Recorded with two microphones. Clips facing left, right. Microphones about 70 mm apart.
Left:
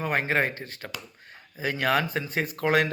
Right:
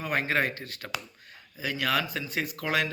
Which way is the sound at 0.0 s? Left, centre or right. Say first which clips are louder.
Left 2 dB; left.